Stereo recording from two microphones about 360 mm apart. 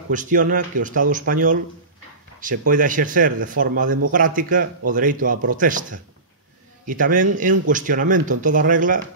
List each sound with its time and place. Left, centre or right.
0.1 s speech: right
5.3 s speech: right
5.6 s speech: right
6.9 s speech: right